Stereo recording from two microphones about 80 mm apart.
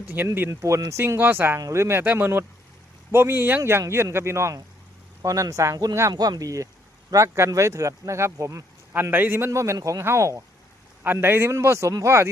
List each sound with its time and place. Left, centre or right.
0.2 s speech: right
0.6 s speech: right
1.5 s speech: right
6.1 s speech: right
8.9 s speech: right
9.5 s speech: right
10.0 s speech: right
11.0 s speech: right